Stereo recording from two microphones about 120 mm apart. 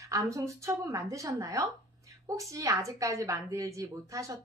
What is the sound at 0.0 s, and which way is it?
A woman's voice, 25° right (ahead or behind).